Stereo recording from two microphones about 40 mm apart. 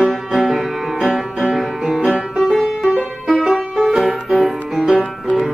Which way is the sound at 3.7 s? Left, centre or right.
Centre.